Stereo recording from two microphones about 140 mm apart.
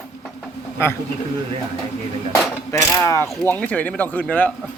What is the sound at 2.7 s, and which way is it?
Speech, 20° left (ahead or behind).